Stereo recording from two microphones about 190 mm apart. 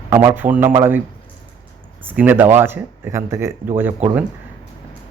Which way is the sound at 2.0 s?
10° right (ahead or behind).